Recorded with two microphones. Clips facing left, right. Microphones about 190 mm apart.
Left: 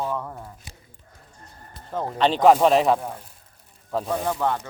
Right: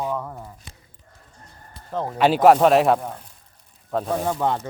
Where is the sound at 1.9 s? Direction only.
5° right (ahead or behind).